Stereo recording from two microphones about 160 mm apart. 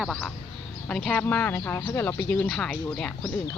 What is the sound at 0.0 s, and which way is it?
Speech, centre (ahead or behind).